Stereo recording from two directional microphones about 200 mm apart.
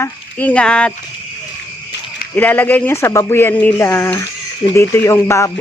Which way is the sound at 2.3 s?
10° left (ahead or behind).